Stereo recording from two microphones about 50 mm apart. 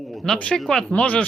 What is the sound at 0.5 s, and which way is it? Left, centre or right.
Speech, centre.